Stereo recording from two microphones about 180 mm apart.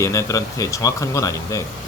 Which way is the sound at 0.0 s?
15° left (ahead or behind).